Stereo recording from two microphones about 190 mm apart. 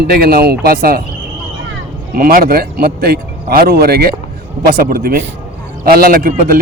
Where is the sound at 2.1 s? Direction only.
50° right (ahead or behind).